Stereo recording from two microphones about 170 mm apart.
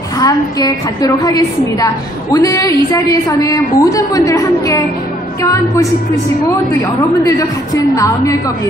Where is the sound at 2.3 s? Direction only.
20° left (ahead or behind).